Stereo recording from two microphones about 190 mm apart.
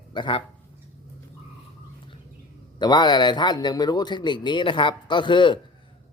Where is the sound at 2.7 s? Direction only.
25° left (ahead or behind).